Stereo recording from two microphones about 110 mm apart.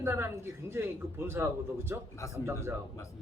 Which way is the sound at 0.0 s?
20° right (ahead or behind).